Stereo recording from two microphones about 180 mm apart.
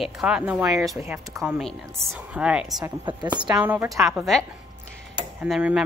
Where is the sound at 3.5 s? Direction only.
10° right (ahead or behind).